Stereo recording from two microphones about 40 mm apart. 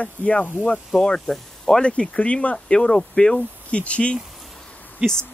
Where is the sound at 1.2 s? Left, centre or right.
Centre.